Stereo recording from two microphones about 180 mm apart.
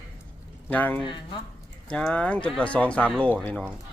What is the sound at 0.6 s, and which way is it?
Speech, 10° left (ahead or behind).